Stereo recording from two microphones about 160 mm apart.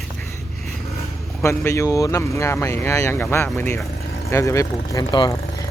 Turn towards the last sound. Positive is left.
turn(degrees=25)  # may be behind; listen again after turning